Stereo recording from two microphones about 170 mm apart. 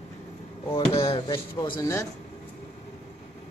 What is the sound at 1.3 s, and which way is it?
Speech, 20° left (ahead or behind).